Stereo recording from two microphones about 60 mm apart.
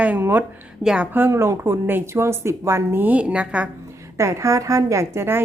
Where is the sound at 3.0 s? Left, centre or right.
Right.